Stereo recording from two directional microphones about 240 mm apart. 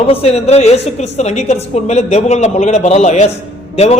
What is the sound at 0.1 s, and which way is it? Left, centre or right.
A woman's voice, left.